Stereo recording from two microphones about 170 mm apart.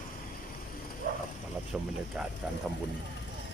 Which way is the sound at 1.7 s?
5° right (ahead or behind).